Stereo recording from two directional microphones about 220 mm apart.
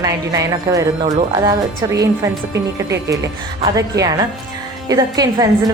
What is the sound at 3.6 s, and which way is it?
A woman's voice, 15° right (ahead or behind).